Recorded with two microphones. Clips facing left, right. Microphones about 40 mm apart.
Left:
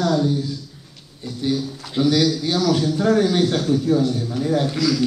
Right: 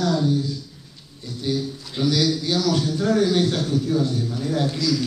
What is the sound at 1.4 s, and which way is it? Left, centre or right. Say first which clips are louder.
A man's voice: left 2 dB; centre.